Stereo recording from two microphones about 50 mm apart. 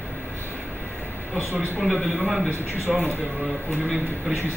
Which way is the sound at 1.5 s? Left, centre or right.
Right.